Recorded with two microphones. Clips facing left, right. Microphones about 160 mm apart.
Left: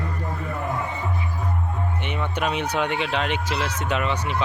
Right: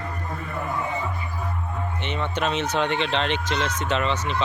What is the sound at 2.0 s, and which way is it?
Speech, 10° left (ahead or behind).